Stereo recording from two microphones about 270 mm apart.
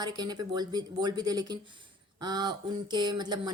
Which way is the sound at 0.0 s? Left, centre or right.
Centre.